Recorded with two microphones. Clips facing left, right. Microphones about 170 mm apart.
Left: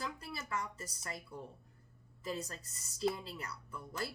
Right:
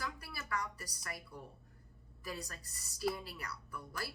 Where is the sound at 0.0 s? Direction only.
20° left (ahead or behind).